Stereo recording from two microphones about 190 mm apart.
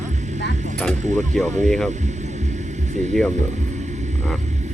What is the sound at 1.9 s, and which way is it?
Music, 40° right (ahead or behind).